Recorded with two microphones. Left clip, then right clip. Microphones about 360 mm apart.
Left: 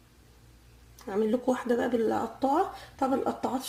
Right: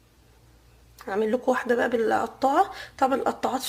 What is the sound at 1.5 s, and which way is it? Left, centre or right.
A woman's voice, right.